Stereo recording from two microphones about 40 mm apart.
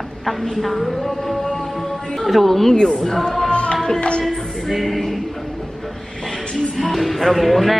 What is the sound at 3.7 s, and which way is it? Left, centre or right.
Music, centre.